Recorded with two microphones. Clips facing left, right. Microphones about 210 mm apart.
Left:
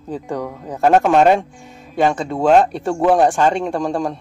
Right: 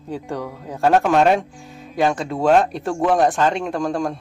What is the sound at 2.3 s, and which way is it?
Speech, 40° left (ahead or behind).